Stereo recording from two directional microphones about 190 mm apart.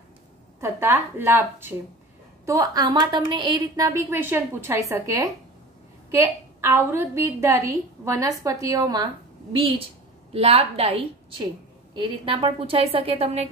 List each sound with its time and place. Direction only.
0.6 s a woman's voice: 15° right (ahead or behind); by 13.5 s 30° right (ahead or behind)